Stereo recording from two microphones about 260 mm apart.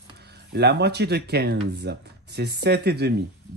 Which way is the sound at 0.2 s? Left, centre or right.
Right.